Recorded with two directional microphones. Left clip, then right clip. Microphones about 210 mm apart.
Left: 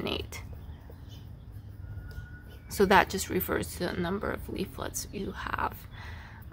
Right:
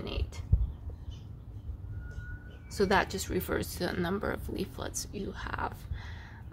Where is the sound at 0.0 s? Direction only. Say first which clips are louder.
Left 6 dB; 25° left (ahead or behind).